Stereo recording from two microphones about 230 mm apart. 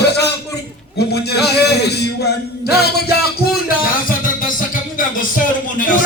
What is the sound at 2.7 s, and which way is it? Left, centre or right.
Music, left.